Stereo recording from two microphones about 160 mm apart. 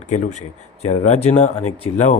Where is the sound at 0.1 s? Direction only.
45° left (ahead or behind).